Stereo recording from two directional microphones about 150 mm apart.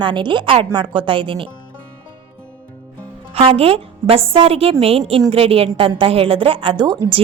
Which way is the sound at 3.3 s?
40° right (ahead or behind).